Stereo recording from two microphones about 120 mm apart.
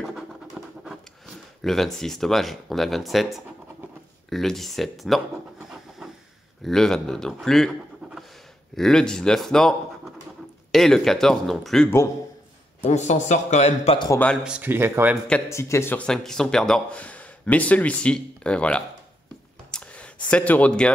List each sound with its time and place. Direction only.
0.0 s scratch: centre (ahead or behind)
1.6 s speech: centre (ahead or behind)
12.8 s a man's voice: 75° left (ahead or behind)
14.4 s speech: 10° right (ahead or behind)
15.4 s speech: 25° left (ahead or behind)
16.0 s speech: 5° left (ahead or behind)
19.7 s a sound: 10° left (ahead or behind)
20.2 s speech: 10° left (ahead or behind)